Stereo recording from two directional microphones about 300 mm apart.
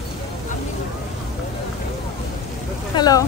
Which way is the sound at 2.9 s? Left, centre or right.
Centre.